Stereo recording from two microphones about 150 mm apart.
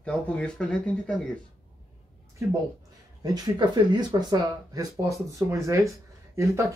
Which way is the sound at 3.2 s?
25° right (ahead or behind).